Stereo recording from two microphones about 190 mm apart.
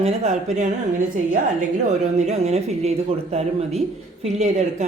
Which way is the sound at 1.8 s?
35° right (ahead or behind).